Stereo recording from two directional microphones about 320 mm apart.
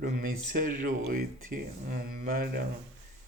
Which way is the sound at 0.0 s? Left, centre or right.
Right.